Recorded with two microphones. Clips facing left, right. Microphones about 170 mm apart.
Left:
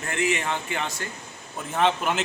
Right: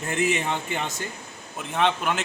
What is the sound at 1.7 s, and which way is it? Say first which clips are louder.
Speech: left 1 dB; 5° left (ahead or behind).